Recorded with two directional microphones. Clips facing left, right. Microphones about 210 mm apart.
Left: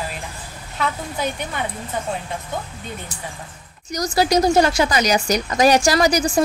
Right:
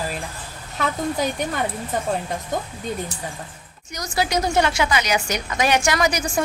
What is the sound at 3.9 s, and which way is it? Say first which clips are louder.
Speech: left 5 dB; 40° left (ahead or behind).